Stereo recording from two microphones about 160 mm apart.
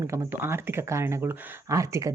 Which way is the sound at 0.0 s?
20° right (ahead or behind).